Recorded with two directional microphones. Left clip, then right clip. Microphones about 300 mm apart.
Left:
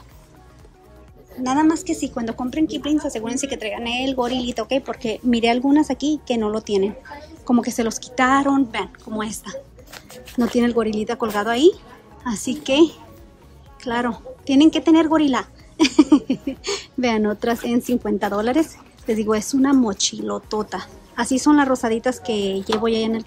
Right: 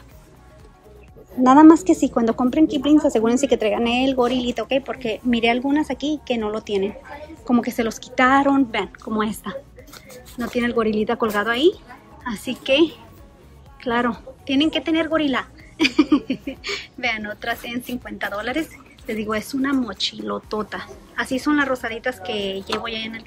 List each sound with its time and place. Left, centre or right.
1.4 s a woman's voice: centre